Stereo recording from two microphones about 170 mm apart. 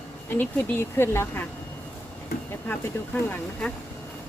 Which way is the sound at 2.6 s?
10° left (ahead or behind).